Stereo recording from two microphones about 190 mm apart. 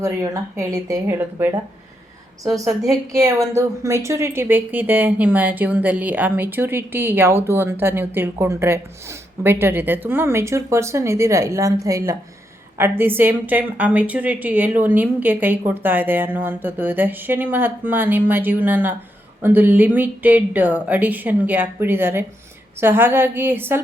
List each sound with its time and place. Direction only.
0.0 s a woman's voice: 15° right (ahead or behind)